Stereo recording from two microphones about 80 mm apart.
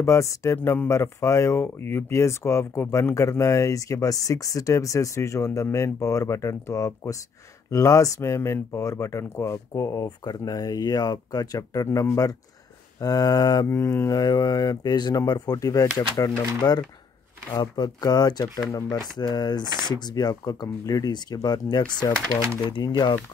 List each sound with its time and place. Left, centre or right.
0.0 s speech: left
0.6 s speech: left
0.8 s speech: left
10.0 s speech: left
13.7 s speech: left